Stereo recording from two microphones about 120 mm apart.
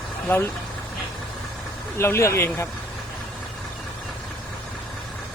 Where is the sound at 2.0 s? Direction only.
25° left (ahead or behind).